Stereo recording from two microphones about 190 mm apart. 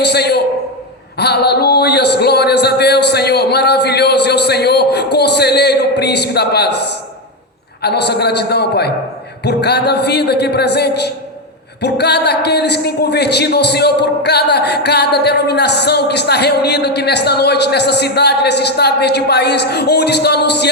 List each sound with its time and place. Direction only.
0.0 s a man's voice: 60° left (ahead or behind)
7.8 s a man's voice: 60° left (ahead or behind)